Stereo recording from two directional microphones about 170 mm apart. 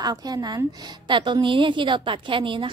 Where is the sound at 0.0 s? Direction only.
25° right (ahead or behind).